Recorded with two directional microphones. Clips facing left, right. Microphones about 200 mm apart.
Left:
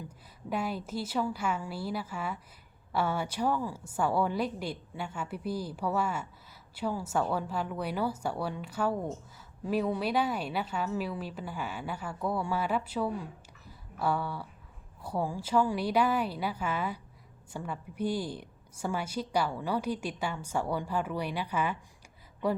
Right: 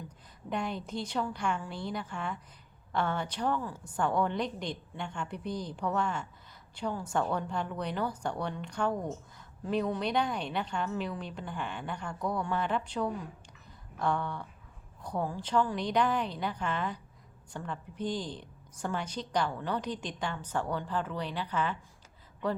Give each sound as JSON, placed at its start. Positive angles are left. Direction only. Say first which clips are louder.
{"t": 0.5, "sound": "a woman's voice", "louder": "left 1 dB", "side_deg": 5}
{"t": 13.7, "sound": "a sound", "louder": "left 1 dB", "side_deg": 5}
{"t": 15.0, "sound": "a woman's voice", "louder": "left 1 dB", "side_deg": 10}